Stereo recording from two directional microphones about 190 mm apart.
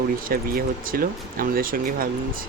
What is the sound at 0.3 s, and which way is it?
Speech, 50° right (ahead or behind).